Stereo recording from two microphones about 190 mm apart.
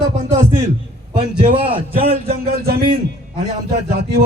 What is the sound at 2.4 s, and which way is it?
Speech, 55° right (ahead or behind).